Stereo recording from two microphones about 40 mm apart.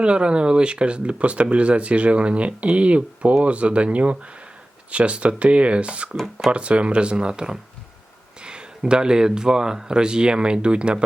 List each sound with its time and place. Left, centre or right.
0.0 s speech: right